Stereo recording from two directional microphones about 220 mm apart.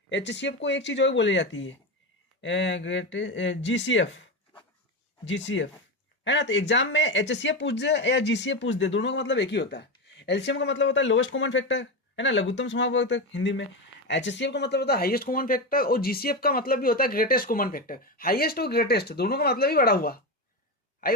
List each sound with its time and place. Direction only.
0.1 s speech: 55° left (ahead or behind)
5.2 s speech: 55° left (ahead or behind)